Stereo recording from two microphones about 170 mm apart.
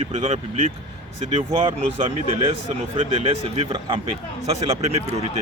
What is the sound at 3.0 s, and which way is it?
Speech, 35° right (ahead or behind).